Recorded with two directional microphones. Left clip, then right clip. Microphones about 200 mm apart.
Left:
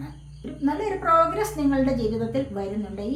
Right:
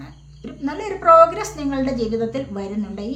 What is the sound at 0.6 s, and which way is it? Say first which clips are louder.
A woman's voice: right 5 dB; 35° right (ahead or behind).